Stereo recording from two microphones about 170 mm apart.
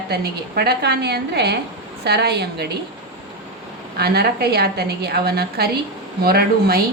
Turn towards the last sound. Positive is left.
turn(degrees=-65)  # may be behind; listen again after turning